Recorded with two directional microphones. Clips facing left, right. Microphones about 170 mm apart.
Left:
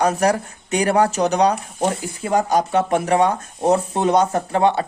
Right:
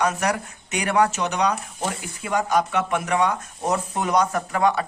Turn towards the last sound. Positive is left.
turn(degrees=30)  # may be behind; listen again after turning